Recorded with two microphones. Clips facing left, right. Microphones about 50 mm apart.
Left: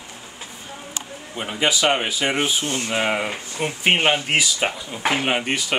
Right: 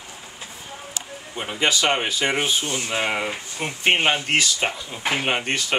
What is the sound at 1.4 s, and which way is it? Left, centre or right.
Speech, centre.